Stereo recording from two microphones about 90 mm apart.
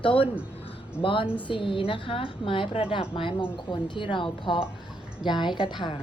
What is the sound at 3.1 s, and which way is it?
A woman's voice, 70° left (ahead or behind).